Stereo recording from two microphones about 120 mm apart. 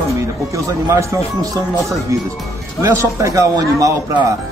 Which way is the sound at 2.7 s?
25° right (ahead or behind).